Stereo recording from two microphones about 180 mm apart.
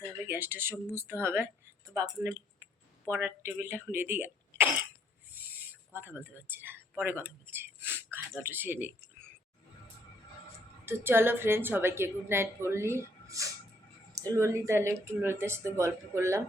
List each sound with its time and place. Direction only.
0.3 s a woman's voice: 10° right (ahead or behind)
10.8 s a woman's voice: 15° right (ahead or behind)